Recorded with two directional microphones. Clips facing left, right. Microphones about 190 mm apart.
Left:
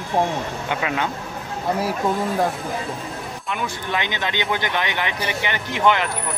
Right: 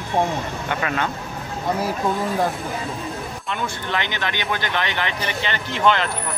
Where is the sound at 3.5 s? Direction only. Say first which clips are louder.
Left 1 dB; 10° left (ahead or behind).